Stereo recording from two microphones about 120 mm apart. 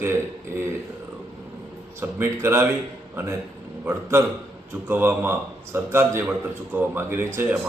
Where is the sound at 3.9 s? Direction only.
20° right (ahead or behind).